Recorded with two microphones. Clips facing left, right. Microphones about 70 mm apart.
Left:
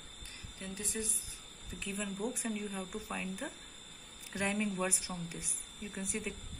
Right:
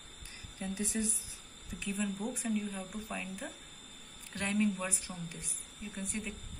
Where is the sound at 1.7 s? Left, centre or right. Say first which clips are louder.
Right 3 dB; centre.